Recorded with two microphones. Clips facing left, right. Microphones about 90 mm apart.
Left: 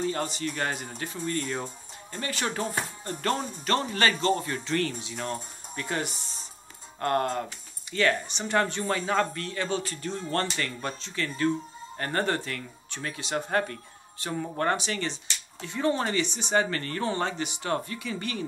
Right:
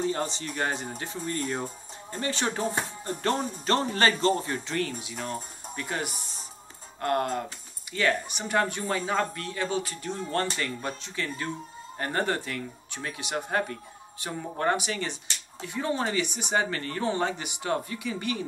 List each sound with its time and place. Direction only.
0.0 s speech: 20° right (ahead or behind)
3.6 s speech: 30° right (ahead or behind)
4.5 s speech: 15° right (ahead or behind)